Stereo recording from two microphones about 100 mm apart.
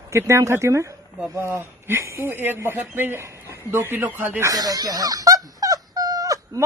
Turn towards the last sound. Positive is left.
turn(degrees=-35)  # may be behind; listen again after turning